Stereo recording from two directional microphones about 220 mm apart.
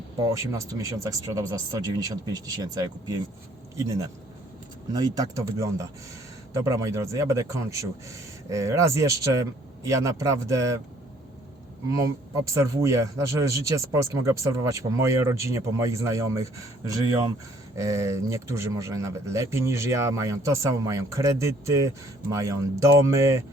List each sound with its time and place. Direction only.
0.3 s a man's voice: 15° right (ahead or behind)
11.9 s a man's voice: 15° right (ahead or behind)